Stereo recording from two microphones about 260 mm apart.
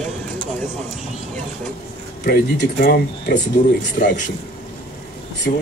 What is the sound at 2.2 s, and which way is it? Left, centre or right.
Speech, left.